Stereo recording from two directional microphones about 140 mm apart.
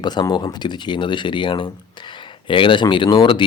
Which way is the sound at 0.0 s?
30° left (ahead or behind).